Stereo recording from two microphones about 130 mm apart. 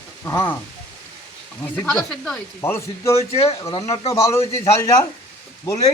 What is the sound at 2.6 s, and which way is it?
Speech, 20° left (ahead or behind).